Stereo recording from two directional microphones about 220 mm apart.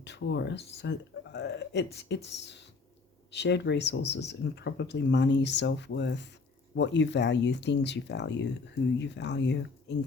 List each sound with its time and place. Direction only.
0.0 s speech: 55° left (ahead or behind)